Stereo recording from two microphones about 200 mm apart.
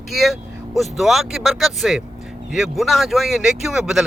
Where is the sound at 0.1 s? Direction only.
Centre (ahead or behind).